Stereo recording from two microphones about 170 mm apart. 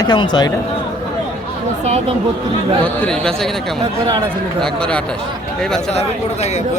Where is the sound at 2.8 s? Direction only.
5° left (ahead or behind).